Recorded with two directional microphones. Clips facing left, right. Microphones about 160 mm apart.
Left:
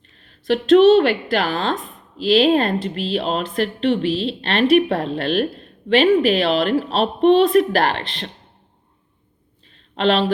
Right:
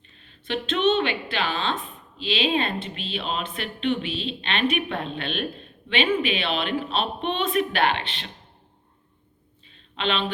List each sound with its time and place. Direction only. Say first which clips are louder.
0.4 s speech: left 11 dB; 40° left (ahead or behind)
9.9 s speech: left 9 dB; 35° left (ahead or behind)